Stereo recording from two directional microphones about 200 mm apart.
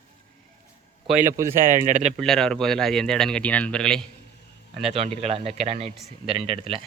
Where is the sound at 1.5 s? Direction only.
40° right (ahead or behind).